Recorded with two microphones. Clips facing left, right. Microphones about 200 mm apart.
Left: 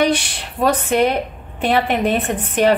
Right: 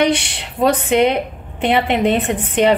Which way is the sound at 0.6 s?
20° right (ahead or behind).